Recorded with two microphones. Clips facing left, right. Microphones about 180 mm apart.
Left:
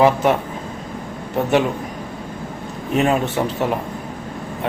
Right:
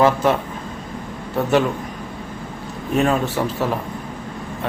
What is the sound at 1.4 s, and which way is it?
Speech, 20° left (ahead or behind).